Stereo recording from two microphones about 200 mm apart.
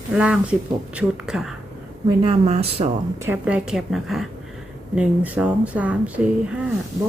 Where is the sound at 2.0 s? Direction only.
25° right (ahead or behind).